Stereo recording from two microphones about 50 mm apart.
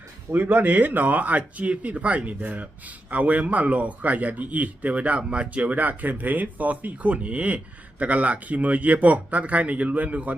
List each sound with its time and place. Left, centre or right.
0.3 s speech: right